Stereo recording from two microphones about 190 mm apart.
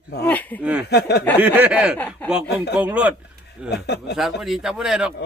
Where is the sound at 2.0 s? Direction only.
5° left (ahead or behind).